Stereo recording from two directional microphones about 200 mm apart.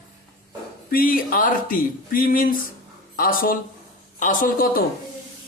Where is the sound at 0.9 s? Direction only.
45° left (ahead or behind).